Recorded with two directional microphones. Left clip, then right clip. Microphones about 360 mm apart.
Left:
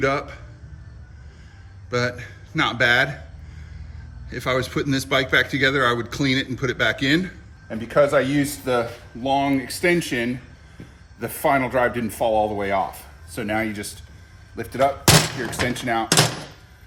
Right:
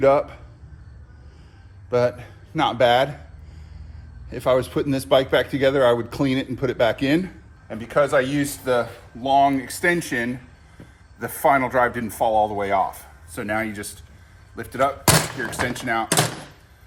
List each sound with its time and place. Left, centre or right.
0.0 s a man's voice: centre
1.9 s speech: centre
4.9 s a man's voice: centre
7.7 s speech: centre